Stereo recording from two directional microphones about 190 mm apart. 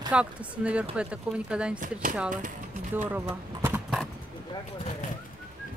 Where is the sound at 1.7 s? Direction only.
45° right (ahead or behind).